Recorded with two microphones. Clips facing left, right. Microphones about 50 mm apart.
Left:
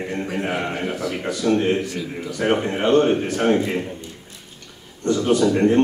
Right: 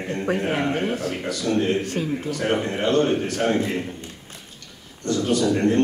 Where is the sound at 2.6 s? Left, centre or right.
Centre.